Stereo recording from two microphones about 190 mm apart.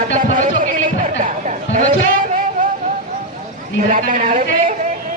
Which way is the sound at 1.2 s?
45° right (ahead or behind).